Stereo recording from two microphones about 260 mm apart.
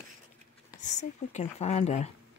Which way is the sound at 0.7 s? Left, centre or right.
Left.